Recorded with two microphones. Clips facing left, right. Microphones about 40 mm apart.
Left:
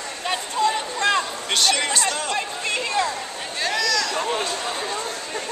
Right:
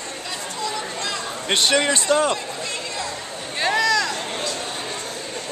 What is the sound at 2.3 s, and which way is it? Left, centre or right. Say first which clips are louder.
Run: left 3 dB; left.